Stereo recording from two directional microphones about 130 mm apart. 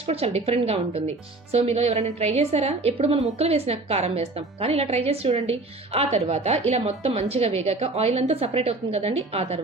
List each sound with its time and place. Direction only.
0.1 s a woman's voice: 50° right (ahead or behind)